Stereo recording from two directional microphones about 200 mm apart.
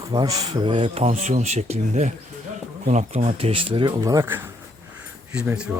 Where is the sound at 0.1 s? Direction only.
25° right (ahead or behind).